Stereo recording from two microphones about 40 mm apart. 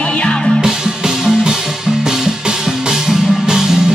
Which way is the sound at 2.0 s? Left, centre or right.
Centre.